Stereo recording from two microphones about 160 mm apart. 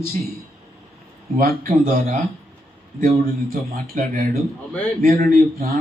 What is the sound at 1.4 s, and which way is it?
Speech, 65° right (ahead or behind).